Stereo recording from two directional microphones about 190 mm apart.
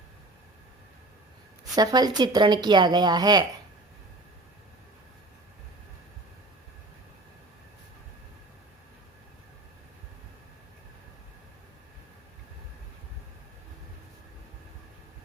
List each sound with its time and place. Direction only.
1.7 s speech: 20° right (ahead or behind)